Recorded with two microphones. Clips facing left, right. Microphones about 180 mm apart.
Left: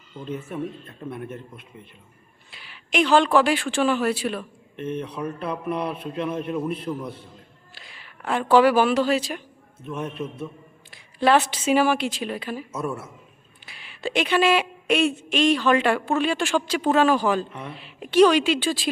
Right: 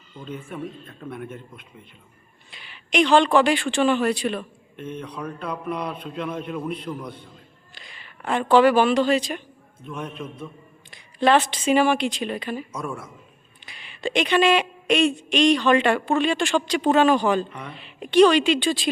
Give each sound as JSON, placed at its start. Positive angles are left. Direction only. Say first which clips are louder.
{"t": 0.3, "sound": "speech", "louder": "left 3 dB", "side_deg": 5}
{"t": 2.5, "sound": "speech", "louder": "right 1 dB", "side_deg": 0}